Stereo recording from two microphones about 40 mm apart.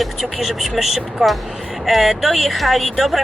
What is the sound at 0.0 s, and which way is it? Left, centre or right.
Vehicle, centre.